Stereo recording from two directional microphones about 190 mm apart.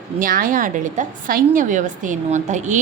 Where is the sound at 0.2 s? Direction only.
45° right (ahead or behind).